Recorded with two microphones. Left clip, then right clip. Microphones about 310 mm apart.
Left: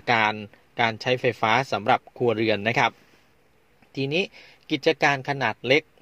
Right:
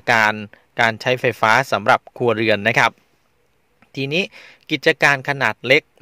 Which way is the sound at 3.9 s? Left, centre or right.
Right.